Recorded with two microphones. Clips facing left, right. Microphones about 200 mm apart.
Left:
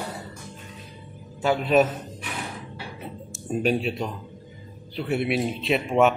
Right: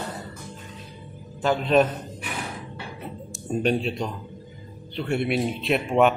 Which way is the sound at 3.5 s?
5° left (ahead or behind).